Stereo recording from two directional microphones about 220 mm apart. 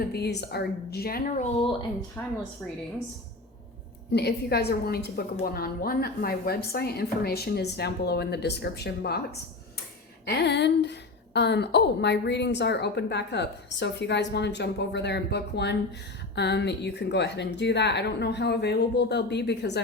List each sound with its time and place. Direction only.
0.1 s a woman's voice: 50° left (ahead or behind)
2.2 s speech: 15° left (ahead or behind)
4.1 s a woman's voice: 50° left (ahead or behind)
10.2 s a woman's voice: 50° left (ahead or behind)